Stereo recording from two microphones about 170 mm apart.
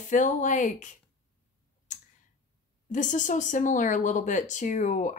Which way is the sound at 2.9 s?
45° left (ahead or behind).